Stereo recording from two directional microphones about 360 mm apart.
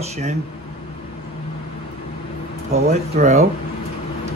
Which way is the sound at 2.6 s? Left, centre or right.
Centre.